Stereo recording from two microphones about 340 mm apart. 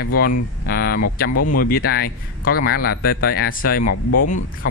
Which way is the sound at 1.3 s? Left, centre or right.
Left.